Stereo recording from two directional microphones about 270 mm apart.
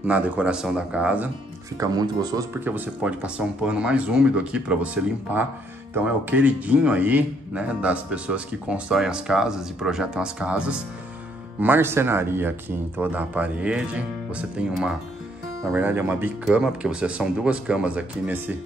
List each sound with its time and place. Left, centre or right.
0.0 s speech: centre